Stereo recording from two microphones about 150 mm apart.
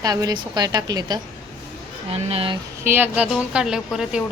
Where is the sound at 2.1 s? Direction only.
40° right (ahead or behind).